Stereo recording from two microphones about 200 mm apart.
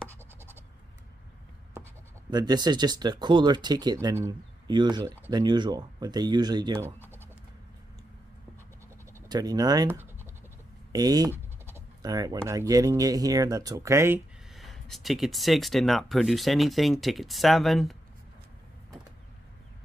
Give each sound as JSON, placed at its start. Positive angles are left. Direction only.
{"t": 2.3, "sound": "speech", "side_deg": -20}
{"t": 9.1, "sound": "speech", "side_deg": -20}
{"t": 11.3, "sound": "a sound", "side_deg": -10}
{"t": 12.4, "sound": "speech", "side_deg": -15}
{"t": 14.5, "sound": "speech", "side_deg": 0}